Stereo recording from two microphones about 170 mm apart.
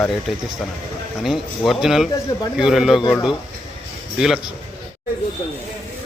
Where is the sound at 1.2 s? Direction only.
Centre (ahead or behind).